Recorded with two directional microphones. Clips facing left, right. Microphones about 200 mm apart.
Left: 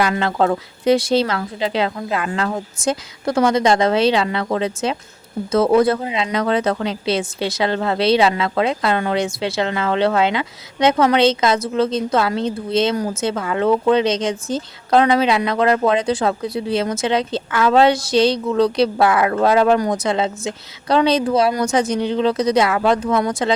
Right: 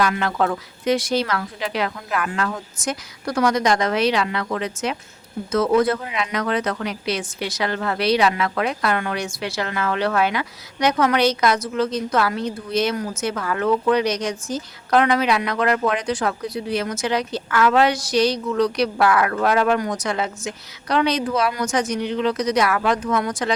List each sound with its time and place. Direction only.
0.0 s speech: 25° left (ahead or behind)